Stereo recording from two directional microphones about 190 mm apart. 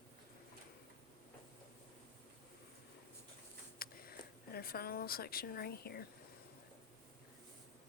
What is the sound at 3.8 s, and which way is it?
Speech, 50° left (ahead or behind).